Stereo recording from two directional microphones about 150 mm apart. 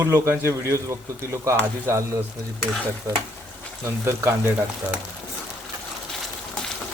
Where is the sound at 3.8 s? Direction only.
15° right (ahead or behind).